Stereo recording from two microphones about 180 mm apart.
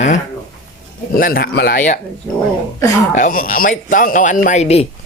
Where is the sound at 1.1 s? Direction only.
55° left (ahead or behind).